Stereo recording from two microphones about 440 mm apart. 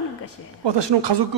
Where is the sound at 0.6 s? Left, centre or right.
Right.